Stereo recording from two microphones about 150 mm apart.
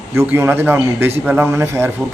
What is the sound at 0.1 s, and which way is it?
Speech, 15° right (ahead or behind).